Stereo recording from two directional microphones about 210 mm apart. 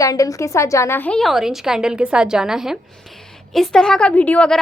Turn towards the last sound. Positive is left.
turn(degrees=5)  # may be behind; listen again after turning